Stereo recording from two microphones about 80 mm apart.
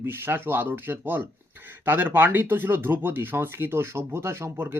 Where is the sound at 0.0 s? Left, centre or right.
Right.